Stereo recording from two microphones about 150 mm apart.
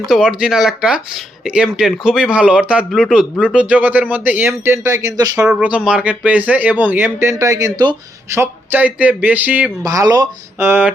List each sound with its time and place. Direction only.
0.1 s speech: 5° right (ahead or behind); by 5.5 s 25° right (ahead or behind)
5.5 s speech: 5° right (ahead or behind)
9.8 s speech: 25° right (ahead or behind)
10.6 s speech: 15° right (ahead or behind)